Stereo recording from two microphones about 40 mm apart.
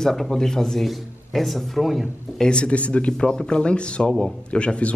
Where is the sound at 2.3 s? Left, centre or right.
Left.